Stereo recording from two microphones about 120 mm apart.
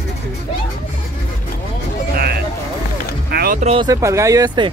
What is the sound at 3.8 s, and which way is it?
Speech, 25° right (ahead or behind).